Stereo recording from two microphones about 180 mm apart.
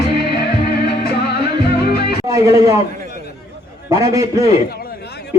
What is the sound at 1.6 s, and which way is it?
Music, 60° left (ahead or behind).